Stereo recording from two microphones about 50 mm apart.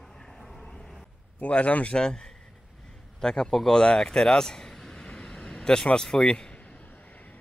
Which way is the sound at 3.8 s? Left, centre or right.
Centre.